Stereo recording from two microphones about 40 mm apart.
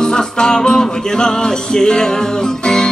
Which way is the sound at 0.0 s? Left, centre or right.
Centre.